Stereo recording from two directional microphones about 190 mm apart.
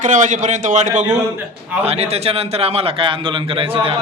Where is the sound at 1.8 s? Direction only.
30° right (ahead or behind).